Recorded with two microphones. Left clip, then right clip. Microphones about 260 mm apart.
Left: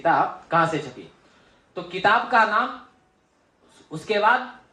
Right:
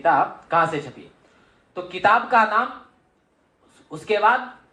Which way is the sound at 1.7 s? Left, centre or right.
Right.